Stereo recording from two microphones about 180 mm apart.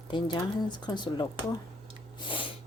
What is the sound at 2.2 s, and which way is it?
Sneeze, 30° left (ahead or behind).